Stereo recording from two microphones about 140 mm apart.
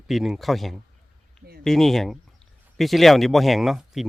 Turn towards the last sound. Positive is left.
turn(degrees=0)  # may be behind; listen again after turning